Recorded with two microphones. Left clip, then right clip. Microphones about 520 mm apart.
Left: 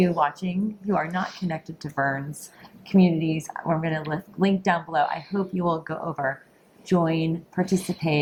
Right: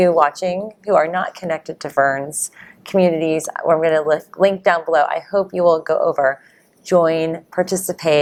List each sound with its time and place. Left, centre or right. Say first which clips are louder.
0.0 s speech: right 9 dB; right